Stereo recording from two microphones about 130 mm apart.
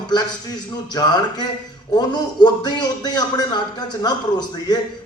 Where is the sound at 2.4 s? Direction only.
30° left (ahead or behind).